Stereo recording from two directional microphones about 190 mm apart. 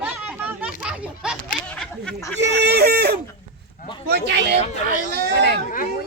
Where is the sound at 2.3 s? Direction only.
65° right (ahead or behind).